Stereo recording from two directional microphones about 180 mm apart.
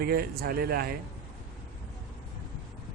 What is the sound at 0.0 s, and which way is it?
Speech, 55° right (ahead or behind).